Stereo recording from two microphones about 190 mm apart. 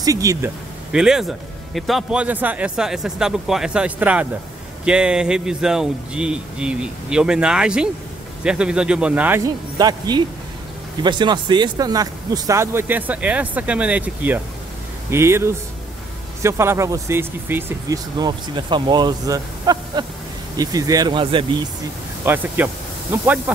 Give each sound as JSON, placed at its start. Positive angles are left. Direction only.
{"t": 0.0, "sound": "speech", "side_deg": -15}
{"t": 0.9, "sound": "speech", "side_deg": -5}
{"t": 22.2, "sound": "speech", "side_deg": -10}